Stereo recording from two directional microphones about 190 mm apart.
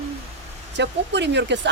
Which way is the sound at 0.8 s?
65° right (ahead or behind).